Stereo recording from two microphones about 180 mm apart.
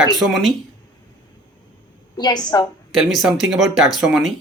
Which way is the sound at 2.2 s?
20° left (ahead or behind).